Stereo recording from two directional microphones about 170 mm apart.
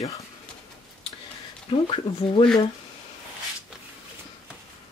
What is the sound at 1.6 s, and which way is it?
Speech, 30° left (ahead or behind).